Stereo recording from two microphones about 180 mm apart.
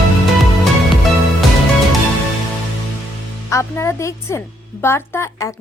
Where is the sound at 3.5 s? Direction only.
15° left (ahead or behind).